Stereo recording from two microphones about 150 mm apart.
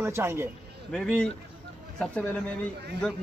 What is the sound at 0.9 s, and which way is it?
Speech, 5° left (ahead or behind).